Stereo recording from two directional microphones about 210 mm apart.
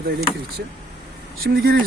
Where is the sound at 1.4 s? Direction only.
45° right (ahead or behind).